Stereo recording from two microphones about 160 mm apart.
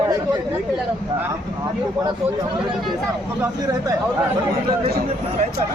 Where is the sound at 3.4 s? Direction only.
20° right (ahead or behind).